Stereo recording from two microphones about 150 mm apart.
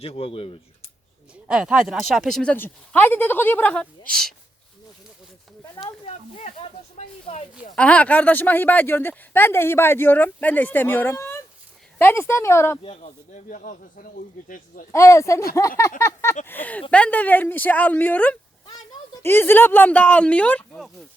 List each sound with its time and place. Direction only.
0.0 s speech: 40° left (ahead or behind)
1.5 s speech: 5° right (ahead or behind)
5.7 s speech: 30° left (ahead or behind)
6.4 s speech: 45° left (ahead or behind)
7.8 s speech: 10° left (ahead or behind)
12.8 s speech: 45° left (ahead or behind); by 14.8 s 65° left (ahead or behind)
14.9 s speech: 20° left (ahead or behind)